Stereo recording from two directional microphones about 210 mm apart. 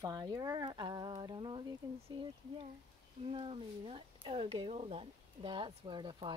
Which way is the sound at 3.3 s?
25° right (ahead or behind).